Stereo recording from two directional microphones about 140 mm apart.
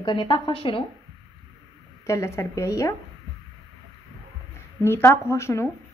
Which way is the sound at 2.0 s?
20° left (ahead or behind).